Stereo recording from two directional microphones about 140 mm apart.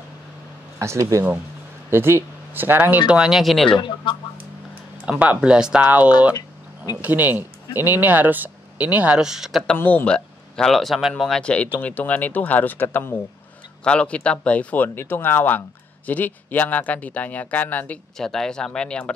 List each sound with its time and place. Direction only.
0.7 s speech: 20° right (ahead or behind); by 3.7 s centre (ahead or behind)
3.7 s speech: 35° left (ahead or behind)
5.0 s speech: 10° right (ahead or behind)
9.8 s speech: 10° left (ahead or behind)